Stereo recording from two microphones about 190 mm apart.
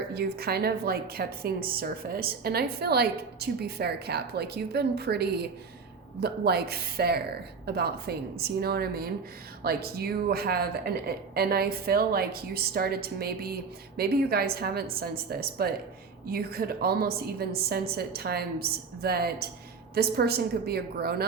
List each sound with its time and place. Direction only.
0.1 s a woman's voice: 55° right (ahead or behind)